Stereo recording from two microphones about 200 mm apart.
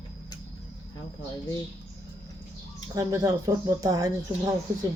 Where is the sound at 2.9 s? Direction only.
20° right (ahead or behind).